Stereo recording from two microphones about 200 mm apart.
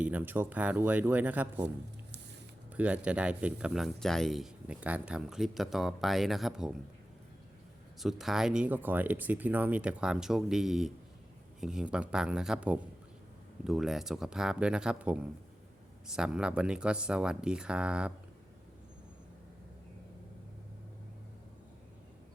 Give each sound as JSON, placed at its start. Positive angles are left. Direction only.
{"t": 0.0, "sound": "speech", "side_deg": -10}
{"t": 2.7, "sound": "speech", "side_deg": -5}
{"t": 7.9, "sound": "speech", "side_deg": 0}